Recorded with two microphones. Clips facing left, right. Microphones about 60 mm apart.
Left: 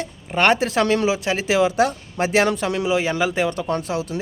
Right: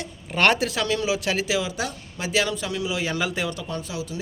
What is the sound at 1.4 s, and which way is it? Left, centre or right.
Speech, left.